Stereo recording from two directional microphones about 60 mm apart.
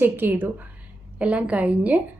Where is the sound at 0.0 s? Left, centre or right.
Right.